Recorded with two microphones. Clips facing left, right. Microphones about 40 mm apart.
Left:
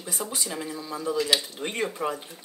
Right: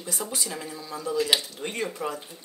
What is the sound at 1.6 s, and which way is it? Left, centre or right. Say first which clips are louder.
Speech: left 2 dB; left.